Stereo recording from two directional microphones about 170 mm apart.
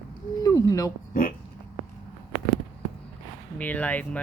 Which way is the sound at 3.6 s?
10° left (ahead or behind).